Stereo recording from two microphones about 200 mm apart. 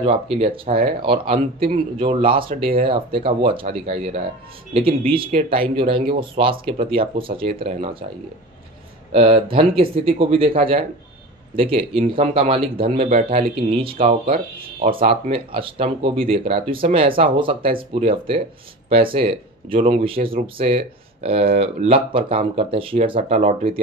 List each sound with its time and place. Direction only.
0.0 s speech: 30° right (ahead or behind)
9.1 s speech: 30° right (ahead or behind)
14.0 s speech: 45° right (ahead or behind)
14.8 s speech: 25° right (ahead or behind)
19.8 s speech: 40° right (ahead or behind)
20.4 s speech: 30° right (ahead or behind)